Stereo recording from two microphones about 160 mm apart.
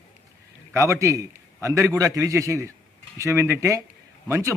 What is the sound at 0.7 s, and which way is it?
A man's voice, 20° right (ahead or behind).